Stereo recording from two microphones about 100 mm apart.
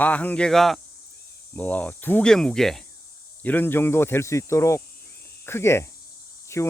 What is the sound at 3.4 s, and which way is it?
Speech, 20° left (ahead or behind).